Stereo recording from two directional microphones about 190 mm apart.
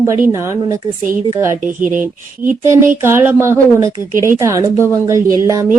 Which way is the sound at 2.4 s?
15° right (ahead or behind).